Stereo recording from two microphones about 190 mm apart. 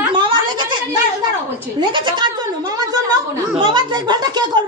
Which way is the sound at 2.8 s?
20° right (ahead or behind).